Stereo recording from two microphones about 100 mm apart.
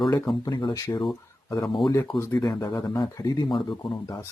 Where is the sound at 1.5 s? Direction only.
40° left (ahead or behind).